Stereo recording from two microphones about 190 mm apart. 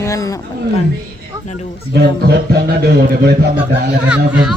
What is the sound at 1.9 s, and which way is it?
A man's voice, 60° right (ahead or behind).